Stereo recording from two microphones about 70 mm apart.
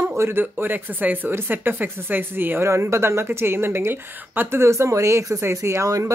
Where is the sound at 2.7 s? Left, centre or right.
Right.